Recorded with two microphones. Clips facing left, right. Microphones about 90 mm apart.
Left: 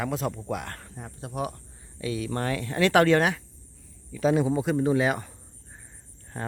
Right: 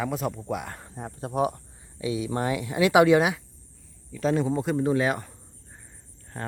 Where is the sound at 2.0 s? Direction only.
15° right (ahead or behind).